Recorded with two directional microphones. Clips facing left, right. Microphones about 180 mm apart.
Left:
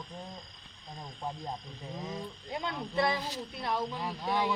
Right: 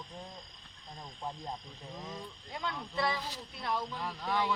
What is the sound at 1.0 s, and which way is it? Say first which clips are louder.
Speech: left 3 dB; 10° left (ahead or behind).